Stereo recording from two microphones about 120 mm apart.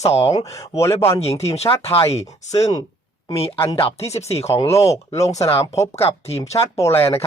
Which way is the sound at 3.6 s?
25° left (ahead or behind).